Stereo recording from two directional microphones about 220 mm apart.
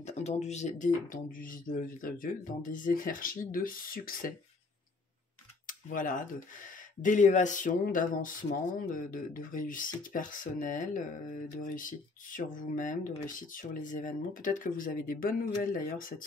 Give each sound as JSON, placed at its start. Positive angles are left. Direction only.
{"t": 0.0, "sound": "speech", "side_deg": 30}
{"t": 5.7, "sound": "speech", "side_deg": 35}